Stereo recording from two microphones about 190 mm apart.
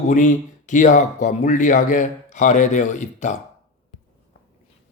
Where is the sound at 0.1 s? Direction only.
40° left (ahead or behind).